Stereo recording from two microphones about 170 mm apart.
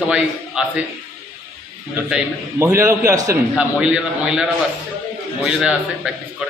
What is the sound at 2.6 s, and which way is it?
Speech, 15° right (ahead or behind).